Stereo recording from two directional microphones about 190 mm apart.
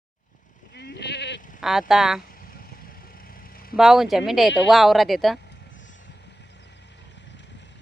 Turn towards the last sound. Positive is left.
turn(degrees=70)  # may be behind; listen again after turning